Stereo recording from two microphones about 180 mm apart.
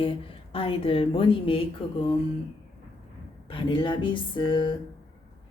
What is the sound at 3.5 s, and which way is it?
Speech, 30° left (ahead or behind).